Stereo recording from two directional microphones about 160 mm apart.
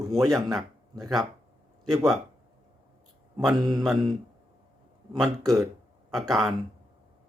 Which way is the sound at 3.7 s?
Centre (ahead or behind).